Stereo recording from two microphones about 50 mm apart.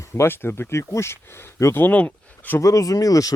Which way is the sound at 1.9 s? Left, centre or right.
Left.